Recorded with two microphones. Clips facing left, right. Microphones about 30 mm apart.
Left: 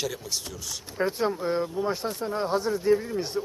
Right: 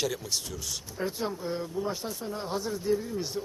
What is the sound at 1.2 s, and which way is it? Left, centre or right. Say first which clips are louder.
Speech: left 6 dB; left.